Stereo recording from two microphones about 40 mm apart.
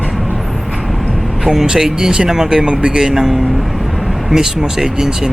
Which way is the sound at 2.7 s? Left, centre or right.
Right.